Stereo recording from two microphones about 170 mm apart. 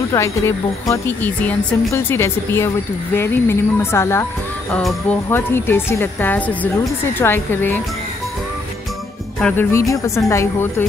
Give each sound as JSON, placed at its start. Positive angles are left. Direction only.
{"t": 0.1, "sound": "speech", "side_deg": 15}
{"t": 9.4, "sound": "speech", "side_deg": 15}